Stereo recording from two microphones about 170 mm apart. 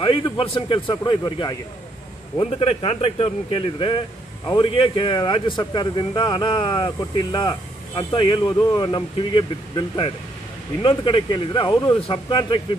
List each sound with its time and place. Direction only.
0.0 s speech: 30° left (ahead or behind)